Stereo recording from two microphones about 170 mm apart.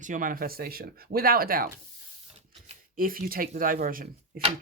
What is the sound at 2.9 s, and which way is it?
Speech, 55° right (ahead or behind).